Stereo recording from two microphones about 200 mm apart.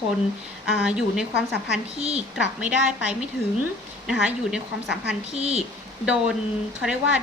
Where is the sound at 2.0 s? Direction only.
30° right (ahead or behind).